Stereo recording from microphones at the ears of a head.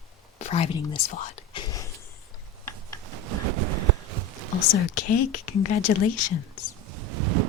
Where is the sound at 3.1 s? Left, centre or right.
Right.